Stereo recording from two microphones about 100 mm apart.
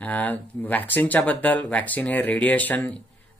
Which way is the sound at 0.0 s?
15° left (ahead or behind).